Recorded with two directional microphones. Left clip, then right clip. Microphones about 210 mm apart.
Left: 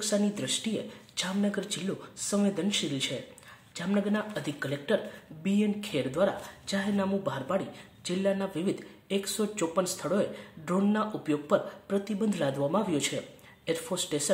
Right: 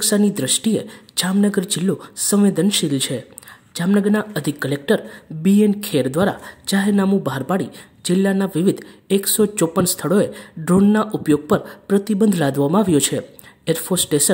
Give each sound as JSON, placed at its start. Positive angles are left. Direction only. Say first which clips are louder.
{"t": 0.0, "sound": "a woman's voice", "louder": "right 11 dB", "side_deg": -45}